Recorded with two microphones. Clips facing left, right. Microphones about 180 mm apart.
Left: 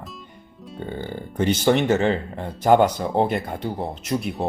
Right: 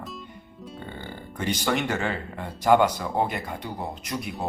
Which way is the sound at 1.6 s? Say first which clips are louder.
Left 8 dB; 30° left (ahead or behind).